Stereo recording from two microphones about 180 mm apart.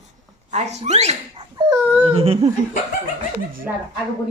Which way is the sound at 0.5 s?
40° right (ahead or behind).